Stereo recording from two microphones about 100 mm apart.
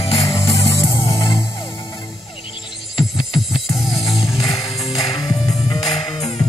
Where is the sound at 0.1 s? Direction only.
65° left (ahead or behind).